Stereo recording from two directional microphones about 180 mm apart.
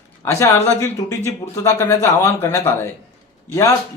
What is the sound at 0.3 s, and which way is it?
Speech, 15° left (ahead or behind).